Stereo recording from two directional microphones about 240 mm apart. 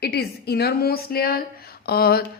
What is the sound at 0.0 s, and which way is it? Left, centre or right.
A woman's voice, left.